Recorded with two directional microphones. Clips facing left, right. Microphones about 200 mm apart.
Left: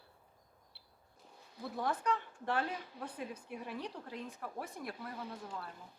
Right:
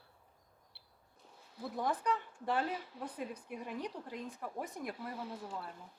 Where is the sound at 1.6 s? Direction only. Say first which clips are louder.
Right 1 dB; 10° right (ahead or behind).